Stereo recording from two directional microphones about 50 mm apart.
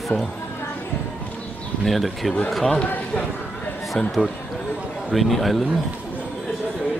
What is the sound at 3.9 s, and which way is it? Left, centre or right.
Speech, centre.